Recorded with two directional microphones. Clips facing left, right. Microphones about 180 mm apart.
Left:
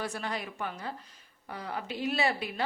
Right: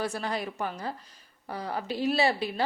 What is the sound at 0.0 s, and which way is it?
A woman's voice, 35° right (ahead or behind).